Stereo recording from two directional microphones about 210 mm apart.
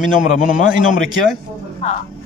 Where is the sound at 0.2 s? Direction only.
35° left (ahead or behind).